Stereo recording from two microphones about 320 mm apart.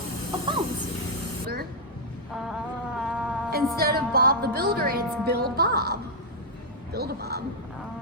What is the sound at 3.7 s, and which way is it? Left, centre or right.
Speech, right.